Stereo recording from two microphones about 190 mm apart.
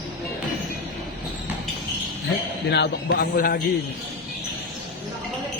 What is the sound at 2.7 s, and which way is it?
Speech, 65° left (ahead or behind).